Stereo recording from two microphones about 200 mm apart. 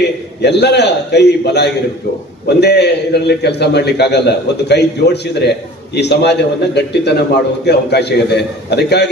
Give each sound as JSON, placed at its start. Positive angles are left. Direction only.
{"t": 0.4, "sound": "a man's voice", "side_deg": 55}